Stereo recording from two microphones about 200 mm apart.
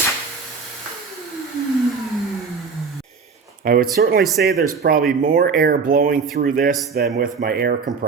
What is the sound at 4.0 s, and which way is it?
Speech, 50° right (ahead or behind).